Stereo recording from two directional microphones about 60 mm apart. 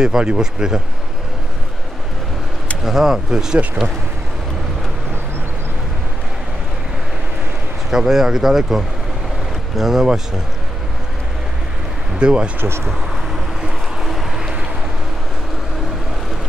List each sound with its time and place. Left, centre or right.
0.0 s speech: centre
2.8 s speech: centre
7.9 s speech: centre
12.2 s speech: centre
12.5 s speech: right
14.0 s vehicle: centre